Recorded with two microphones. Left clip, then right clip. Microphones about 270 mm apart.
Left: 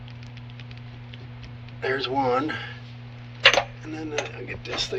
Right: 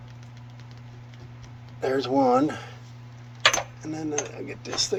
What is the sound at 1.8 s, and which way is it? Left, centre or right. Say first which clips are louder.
Speech: right 2 dB; right.